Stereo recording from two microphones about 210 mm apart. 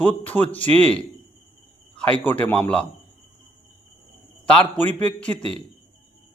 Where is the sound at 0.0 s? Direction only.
10° left (ahead or behind).